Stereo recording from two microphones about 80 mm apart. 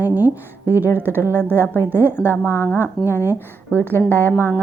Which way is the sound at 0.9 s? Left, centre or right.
Right.